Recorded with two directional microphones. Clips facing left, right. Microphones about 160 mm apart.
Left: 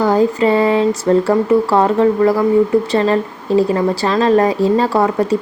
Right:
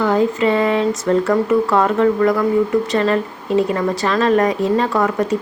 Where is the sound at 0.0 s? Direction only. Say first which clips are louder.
Left 3 dB; 35° left (ahead or behind).